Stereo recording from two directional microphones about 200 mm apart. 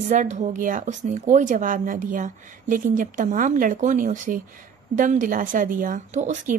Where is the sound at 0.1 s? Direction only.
40° right (ahead or behind).